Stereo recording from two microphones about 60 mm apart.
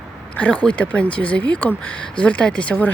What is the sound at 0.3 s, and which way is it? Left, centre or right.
Speech, left.